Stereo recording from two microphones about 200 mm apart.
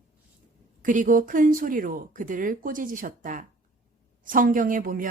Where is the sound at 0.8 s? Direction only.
40° right (ahead or behind).